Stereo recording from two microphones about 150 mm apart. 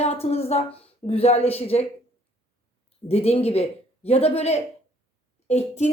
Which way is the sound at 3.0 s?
40° left (ahead or behind).